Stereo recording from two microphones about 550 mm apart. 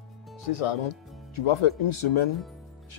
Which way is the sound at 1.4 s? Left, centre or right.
Left.